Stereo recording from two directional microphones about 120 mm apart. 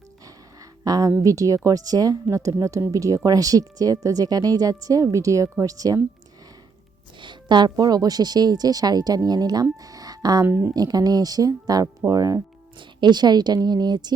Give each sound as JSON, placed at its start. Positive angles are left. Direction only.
{"t": 0.3, "sound": "a sound", "side_deg": -30}
{"t": 1.2, "sound": "a woman's voice", "side_deg": -25}
{"t": 7.2, "sound": "speech", "side_deg": -40}
{"t": 9.8, "sound": "a sound", "side_deg": -30}
{"t": 10.4, "sound": "a woman's voice", "side_deg": -20}
{"t": 10.8, "sound": "speech", "side_deg": -35}